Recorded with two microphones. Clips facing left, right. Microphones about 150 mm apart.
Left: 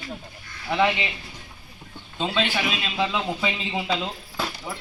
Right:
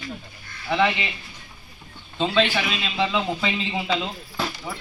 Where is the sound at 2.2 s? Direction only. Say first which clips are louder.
Right 3 dB; 5° left (ahead or behind).